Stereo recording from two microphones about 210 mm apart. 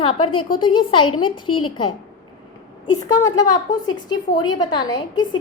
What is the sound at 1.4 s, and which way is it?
Speech, 90° left.